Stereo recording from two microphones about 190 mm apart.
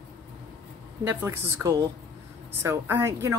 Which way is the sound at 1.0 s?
15° right (ahead or behind).